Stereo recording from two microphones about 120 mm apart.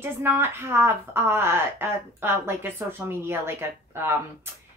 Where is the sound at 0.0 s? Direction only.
20° right (ahead or behind).